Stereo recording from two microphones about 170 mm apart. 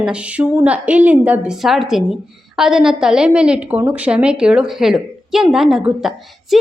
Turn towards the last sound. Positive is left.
turn(degrees=0)  # may be behind; listen again after turning